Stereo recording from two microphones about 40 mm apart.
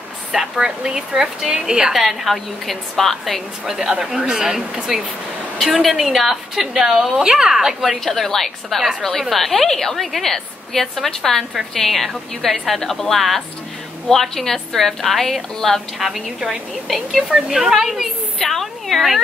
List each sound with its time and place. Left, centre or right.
0.3 s a woman's voice: centre
2.0 s a woman's voice: centre
3.6 s a woman's voice: centre
7.5 s a woman's voice: centre
8.0 s a woman's voice: centre
18.4 s a woman's voice: centre